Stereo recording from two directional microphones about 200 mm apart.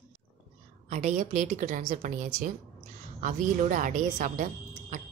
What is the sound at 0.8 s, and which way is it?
A woman's voice, 35° right (ahead or behind).